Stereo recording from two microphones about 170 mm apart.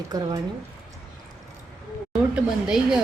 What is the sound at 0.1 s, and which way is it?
Speech, 25° right (ahead or behind).